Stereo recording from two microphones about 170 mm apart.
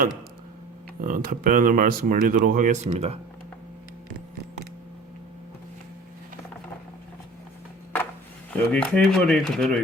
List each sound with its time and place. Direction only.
1.0 s speech: 55° right (ahead or behind); by 3.2 s 40° right (ahead or behind)
8.4 s speech: 5° left (ahead or behind)